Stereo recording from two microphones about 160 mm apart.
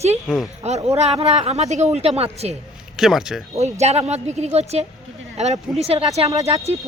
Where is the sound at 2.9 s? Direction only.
Centre (ahead or behind).